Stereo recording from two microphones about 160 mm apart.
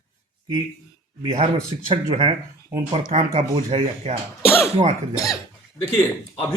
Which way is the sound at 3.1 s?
45° right (ahead or behind).